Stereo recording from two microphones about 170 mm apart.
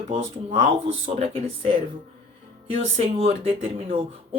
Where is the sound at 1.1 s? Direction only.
35° right (ahead or behind).